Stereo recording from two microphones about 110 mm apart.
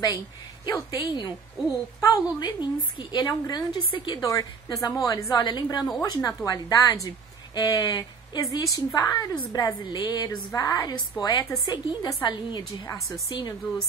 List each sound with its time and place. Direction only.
0.7 s a woman's voice: 40° left (ahead or behind)
3.9 s a woman's voice: 50° left (ahead or behind)
4.2 s a woman's voice: 35° left (ahead or behind)
12.8 s a woman's voice: 30° left (ahead or behind)